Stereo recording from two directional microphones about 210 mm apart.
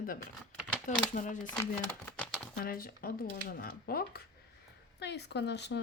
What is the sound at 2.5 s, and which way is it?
A woman's voice, 45° left (ahead or behind).